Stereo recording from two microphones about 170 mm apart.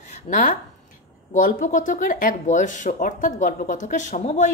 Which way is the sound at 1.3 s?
50° left (ahead or behind).